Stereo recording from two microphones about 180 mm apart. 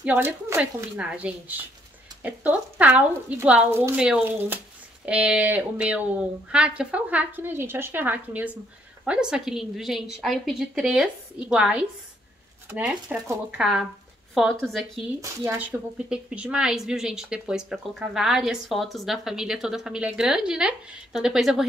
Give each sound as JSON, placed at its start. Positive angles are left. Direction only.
{"t": 0.0, "sound": "a woman's voice", "side_deg": -10}
{"t": 15.1, "sound": "a woman's voice", "side_deg": -15}
{"t": 15.5, "sound": "a woman's voice", "side_deg": -5}